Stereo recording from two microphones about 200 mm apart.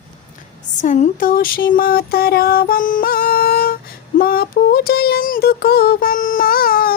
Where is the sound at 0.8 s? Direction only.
35° left (ahead or behind).